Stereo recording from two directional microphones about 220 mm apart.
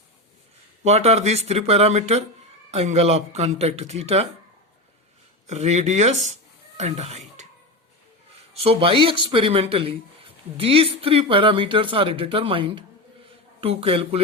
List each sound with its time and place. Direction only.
0.9 s speech: 30° right (ahead or behind)
5.5 s speech: 30° right (ahead or behind)
8.6 s speech: 25° right (ahead or behind)